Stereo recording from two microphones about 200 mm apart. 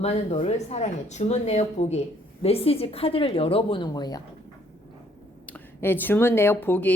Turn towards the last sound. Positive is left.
turn(degrees=10)  # may be behind; listen again after turning